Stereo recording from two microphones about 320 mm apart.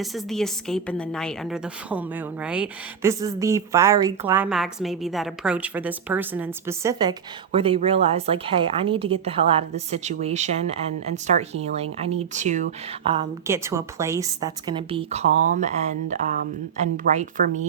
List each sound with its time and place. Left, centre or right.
0.0 s a woman's voice: centre; by 12.6 s right
13.1 s a woman's voice: centre